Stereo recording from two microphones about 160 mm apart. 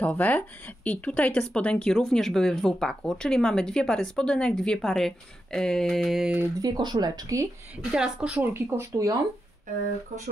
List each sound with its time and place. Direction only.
0.0 s a woman's voice: 10° left (ahead or behind)
6.4 s speech: 25° right (ahead or behind)
7.9 s speech: 5° right (ahead or behind)
8.5 s speech: 15° right (ahead or behind)